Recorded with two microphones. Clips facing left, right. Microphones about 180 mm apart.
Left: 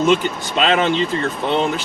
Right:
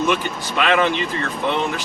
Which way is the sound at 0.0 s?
20° left (ahead or behind).